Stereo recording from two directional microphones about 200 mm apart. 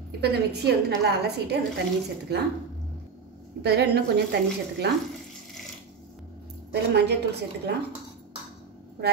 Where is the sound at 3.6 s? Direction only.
55° right (ahead or behind).